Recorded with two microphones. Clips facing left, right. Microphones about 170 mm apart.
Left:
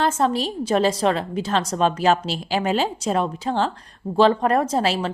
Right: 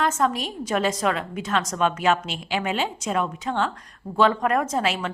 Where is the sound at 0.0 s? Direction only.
30° left (ahead or behind).